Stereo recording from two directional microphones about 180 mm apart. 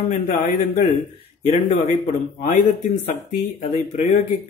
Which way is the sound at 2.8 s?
40° left (ahead or behind).